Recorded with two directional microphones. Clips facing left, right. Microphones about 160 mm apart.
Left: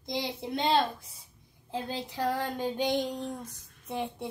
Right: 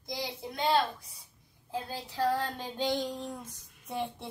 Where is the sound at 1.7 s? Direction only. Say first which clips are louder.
Left 3 dB; 20° left (ahead or behind).